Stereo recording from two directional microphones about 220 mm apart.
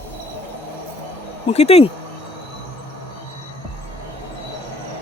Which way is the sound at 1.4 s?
30° left (ahead or behind).